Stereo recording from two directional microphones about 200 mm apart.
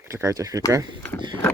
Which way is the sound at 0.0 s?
15° right (ahead or behind).